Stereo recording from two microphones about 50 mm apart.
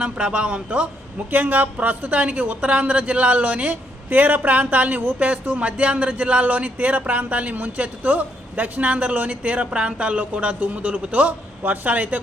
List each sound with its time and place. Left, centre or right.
0.0 s speech: right
1.3 s a woman's voice: right